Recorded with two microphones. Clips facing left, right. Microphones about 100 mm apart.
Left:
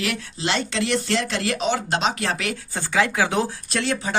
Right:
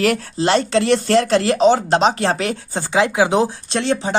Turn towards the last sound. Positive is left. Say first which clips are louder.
# right 5 dB
turn(degrees=-25)  # may be behind; listen again after turning